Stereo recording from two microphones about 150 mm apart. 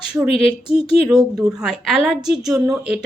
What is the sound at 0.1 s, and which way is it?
Speech, 5° right (ahead or behind).